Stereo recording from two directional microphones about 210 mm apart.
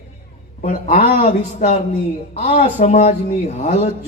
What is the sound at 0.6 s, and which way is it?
Speech, 35° left (ahead or behind).